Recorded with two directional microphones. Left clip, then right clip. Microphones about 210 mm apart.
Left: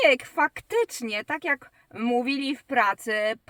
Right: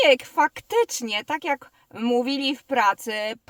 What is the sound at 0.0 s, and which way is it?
Speech, 10° right (ahead or behind).